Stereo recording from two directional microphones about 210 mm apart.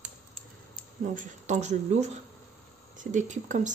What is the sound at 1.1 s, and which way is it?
Speech, 35° right (ahead or behind).